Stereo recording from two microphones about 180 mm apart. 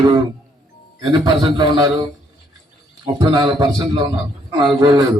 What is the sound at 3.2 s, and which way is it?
A man's voice, 20° right (ahead or behind).